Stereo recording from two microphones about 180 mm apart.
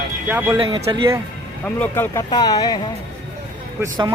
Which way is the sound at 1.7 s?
10° left (ahead or behind).